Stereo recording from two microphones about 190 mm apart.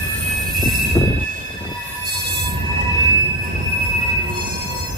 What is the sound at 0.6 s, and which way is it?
Train, centre (ahead or behind).